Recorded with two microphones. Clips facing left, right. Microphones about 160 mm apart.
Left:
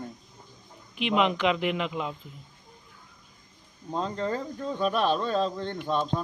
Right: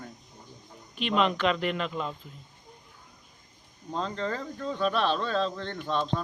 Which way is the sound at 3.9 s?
10° left (ahead or behind).